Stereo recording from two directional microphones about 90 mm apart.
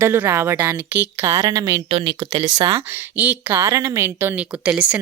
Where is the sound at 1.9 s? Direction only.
90° right.